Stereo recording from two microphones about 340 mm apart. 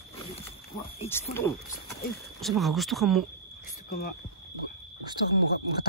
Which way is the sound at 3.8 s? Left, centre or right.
Left.